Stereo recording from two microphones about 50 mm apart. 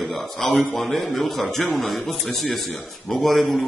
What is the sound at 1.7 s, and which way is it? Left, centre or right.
A man's voice, centre.